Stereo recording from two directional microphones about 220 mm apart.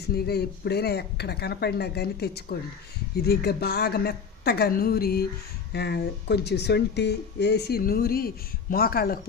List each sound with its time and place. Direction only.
0.0 s speech: 45° left (ahead or behind)